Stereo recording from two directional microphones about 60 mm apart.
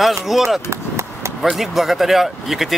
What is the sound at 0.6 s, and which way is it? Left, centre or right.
Chop, right.